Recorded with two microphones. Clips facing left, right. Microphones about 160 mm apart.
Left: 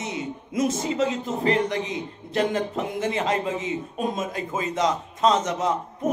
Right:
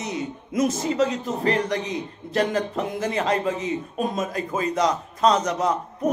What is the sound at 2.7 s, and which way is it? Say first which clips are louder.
A man's voice: right 1 dB; 25° left (ahead or behind).